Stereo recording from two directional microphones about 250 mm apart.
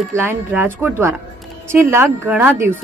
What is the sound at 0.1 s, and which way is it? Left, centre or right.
Speech, centre.